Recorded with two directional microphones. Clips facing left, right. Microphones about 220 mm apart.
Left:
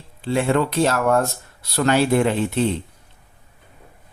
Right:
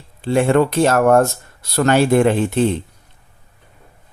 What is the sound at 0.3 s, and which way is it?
Speech, 50° right (ahead or behind).